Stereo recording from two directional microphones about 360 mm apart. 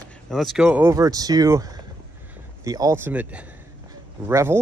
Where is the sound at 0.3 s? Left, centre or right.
Centre.